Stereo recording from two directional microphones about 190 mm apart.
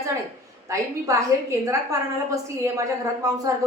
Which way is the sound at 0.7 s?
15° right (ahead or behind).